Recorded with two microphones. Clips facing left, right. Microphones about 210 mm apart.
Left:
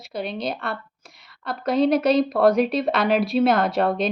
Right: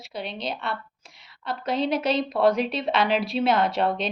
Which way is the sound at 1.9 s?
60° left (ahead or behind).